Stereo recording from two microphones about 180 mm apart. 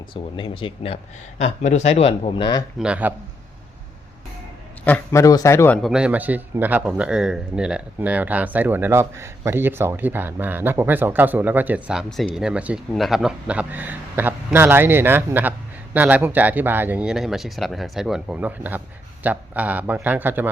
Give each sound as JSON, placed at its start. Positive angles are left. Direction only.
{"t": 0.1, "sound": "speech", "side_deg": 30}
{"t": 1.4, "sound": "speech", "side_deg": 40}
{"t": 2.7, "sound": "a man's voice", "side_deg": -5}
{"t": 4.9, "sound": "a man's voice", "side_deg": 15}
{"t": 5.8, "sound": "a man's voice", "side_deg": -5}